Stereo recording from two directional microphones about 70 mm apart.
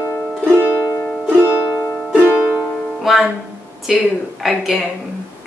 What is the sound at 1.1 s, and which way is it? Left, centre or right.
Music, centre.